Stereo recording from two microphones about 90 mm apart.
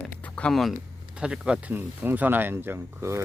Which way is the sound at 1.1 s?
10° right (ahead or behind).